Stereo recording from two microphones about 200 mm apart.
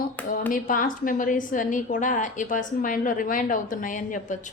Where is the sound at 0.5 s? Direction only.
45° left (ahead or behind).